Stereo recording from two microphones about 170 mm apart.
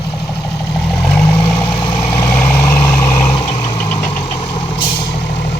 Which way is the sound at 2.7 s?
15° left (ahead or behind).